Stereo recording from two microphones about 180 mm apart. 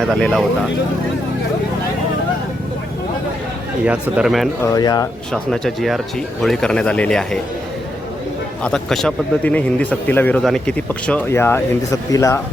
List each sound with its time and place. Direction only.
0.1 s speech: centre (ahead or behind)
3.8 s speech: 5° right (ahead or behind)
4.6 s speech: 20° left (ahead or behind)
5.3 s speech: centre (ahead or behind)
8.6 s a man's voice: 5° left (ahead or behind)